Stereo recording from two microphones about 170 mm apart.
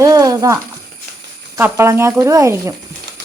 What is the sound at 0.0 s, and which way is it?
Speech, 20° right (ahead or behind).